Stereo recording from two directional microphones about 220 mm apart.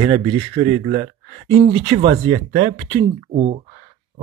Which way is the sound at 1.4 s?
25° right (ahead or behind).